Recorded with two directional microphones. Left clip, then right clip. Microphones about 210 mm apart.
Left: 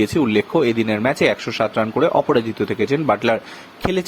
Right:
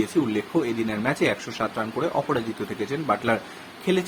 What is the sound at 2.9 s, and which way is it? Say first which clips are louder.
Speech: left 5 dB; 35° left (ahead or behind).